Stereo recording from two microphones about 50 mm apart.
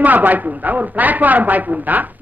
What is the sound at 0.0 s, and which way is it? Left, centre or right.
A woman's voice, right.